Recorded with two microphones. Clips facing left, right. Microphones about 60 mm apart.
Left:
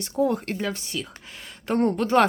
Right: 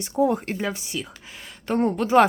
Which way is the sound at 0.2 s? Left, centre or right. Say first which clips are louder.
Right 2 dB; centre.